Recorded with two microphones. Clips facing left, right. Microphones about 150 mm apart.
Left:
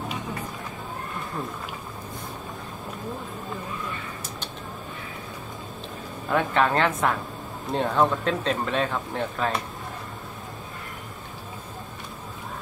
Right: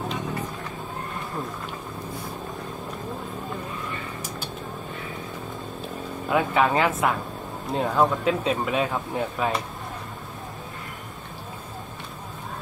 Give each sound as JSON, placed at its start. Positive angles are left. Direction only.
{"t": 6.3, "sound": "speech", "side_deg": -5}